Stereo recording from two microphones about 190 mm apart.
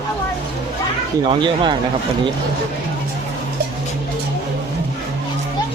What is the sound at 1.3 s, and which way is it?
Speech, 25° right (ahead or behind).